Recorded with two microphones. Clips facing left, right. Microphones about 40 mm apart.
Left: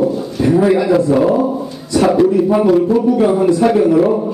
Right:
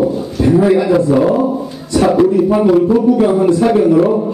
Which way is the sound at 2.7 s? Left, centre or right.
Right.